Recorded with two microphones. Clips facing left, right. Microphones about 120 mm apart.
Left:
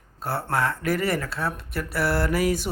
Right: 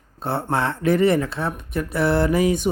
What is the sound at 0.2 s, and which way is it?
Speech, 25° right (ahead or behind).